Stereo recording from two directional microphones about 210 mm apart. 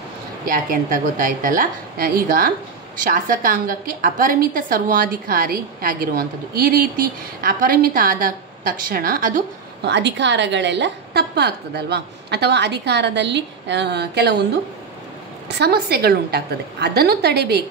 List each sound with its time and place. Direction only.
0.5 s a woman's voice: 40° right (ahead or behind)
9.8 s a woman's voice: 55° right (ahead or behind)
15.4 s a woman's voice: 50° right (ahead or behind)